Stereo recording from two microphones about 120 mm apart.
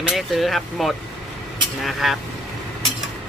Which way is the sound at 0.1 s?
Centre (ahead or behind).